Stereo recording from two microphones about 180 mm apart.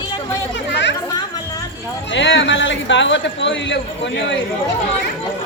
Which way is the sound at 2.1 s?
90° left.